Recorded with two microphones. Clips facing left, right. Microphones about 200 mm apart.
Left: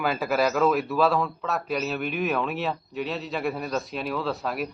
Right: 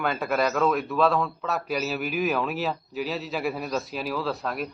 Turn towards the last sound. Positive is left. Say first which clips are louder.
# left 1 dB
turn(degrees=5)  # may be behind; listen again after turning